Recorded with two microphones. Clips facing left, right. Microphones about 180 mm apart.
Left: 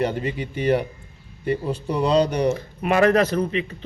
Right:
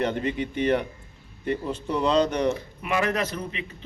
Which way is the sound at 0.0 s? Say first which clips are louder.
Left 2 dB; 5° left (ahead or behind).